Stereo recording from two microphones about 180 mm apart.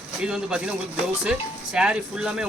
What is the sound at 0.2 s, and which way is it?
Speech, 5° right (ahead or behind).